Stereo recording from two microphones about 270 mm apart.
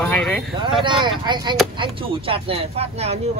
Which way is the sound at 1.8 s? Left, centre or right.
Centre.